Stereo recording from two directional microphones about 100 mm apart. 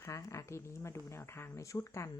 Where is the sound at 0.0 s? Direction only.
30° left (ahead or behind).